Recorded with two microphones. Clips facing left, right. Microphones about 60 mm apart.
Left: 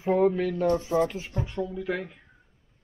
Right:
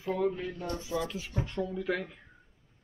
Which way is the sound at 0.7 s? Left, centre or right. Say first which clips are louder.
Left 9 dB; left.